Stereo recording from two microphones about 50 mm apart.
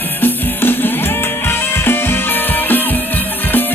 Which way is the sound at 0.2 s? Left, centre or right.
Left.